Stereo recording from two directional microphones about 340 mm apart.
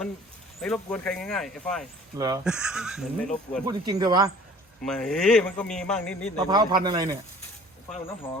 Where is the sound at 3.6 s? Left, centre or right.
Centre.